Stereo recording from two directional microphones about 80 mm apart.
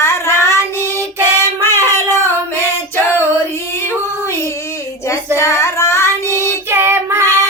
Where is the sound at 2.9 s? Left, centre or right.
Left.